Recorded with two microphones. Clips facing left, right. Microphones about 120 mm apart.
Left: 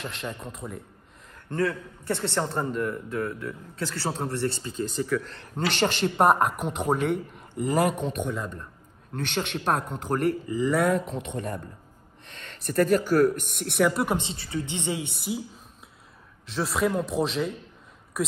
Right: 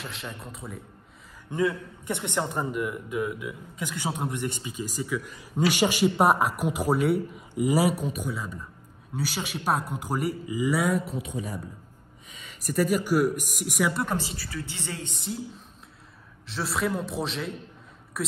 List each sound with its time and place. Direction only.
0.0 s a man's voice: centre (ahead or behind)
1.5 s a man's voice: 15° right (ahead or behind)
14.0 s a woman's voice: 25° left (ahead or behind)
15.1 s a man's voice: 5° left (ahead or behind)